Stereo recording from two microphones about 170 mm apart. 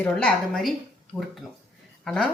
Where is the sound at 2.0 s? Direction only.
Centre (ahead or behind).